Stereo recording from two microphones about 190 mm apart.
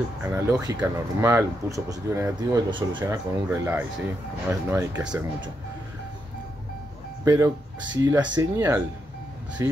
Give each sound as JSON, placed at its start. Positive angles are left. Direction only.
{"t": 0.2, "sound": "speech", "side_deg": -10}
{"t": 7.2, "sound": "speech", "side_deg": -15}